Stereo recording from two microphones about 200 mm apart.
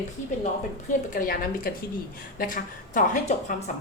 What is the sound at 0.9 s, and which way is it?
A woman's voice, 45° left (ahead or behind).